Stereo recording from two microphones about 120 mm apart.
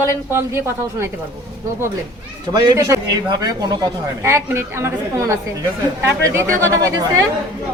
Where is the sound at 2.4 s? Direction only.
35° right (ahead or behind).